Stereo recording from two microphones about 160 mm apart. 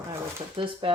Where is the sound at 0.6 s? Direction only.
35° right (ahead or behind).